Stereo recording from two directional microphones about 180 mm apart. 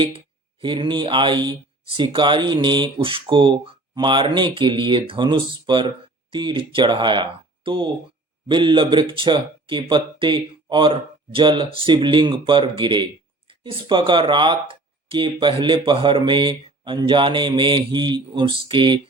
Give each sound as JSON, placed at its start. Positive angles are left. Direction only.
{"t": 0.6, "sound": "speech", "side_deg": -25}